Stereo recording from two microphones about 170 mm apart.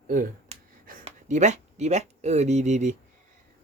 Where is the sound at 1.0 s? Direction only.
45° right (ahead or behind).